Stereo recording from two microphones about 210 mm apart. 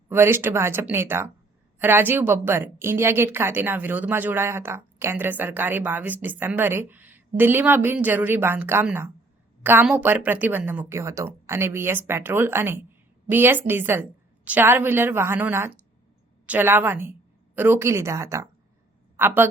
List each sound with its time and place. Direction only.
0.1 s a woman's voice: 10° right (ahead or behind)